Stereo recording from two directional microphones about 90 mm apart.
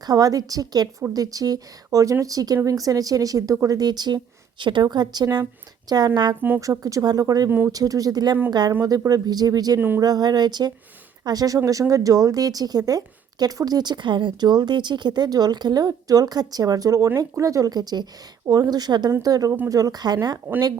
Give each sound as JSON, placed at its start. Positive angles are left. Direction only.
{"t": 0.0, "sound": "a woman's voice", "side_deg": -45}
{"t": 6.6, "sound": "a woman's voice", "side_deg": -40}
{"t": 20.5, "sound": "speech", "side_deg": -20}